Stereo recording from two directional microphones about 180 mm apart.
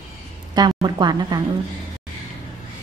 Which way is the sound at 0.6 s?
25° right (ahead or behind).